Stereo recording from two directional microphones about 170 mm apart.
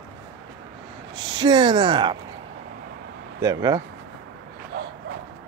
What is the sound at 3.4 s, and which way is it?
Speech, 20° right (ahead or behind).